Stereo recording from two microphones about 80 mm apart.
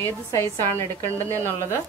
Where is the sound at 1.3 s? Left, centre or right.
Right.